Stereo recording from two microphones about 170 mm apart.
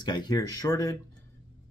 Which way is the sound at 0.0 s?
25° left (ahead or behind).